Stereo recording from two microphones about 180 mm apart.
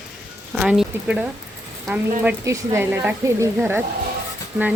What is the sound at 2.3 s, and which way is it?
Speech, 15° right (ahead or behind).